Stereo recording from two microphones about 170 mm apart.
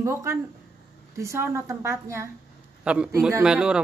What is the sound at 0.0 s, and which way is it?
A woman's voice, 15° right (ahead or behind).